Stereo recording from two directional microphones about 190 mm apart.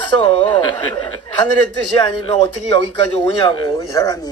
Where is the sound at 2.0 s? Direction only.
30° left (ahead or behind).